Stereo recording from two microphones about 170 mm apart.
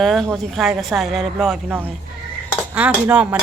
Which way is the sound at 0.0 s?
Centre (ahead or behind).